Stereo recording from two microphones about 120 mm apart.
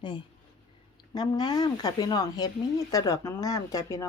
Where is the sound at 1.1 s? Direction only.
35° left (ahead or behind).